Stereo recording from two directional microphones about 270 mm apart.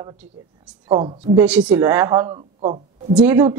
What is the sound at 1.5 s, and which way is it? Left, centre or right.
Speech, centre.